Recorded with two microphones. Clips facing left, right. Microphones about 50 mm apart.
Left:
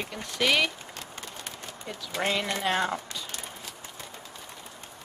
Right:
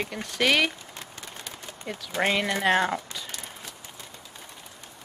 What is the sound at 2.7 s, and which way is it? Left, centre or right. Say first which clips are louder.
Speech: right 4 dB; centre.